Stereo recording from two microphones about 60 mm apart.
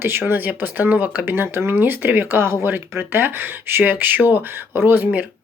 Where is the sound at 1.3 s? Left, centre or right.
Right.